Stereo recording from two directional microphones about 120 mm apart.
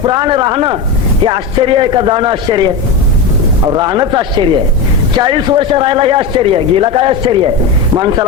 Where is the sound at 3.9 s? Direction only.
40° right (ahead or behind).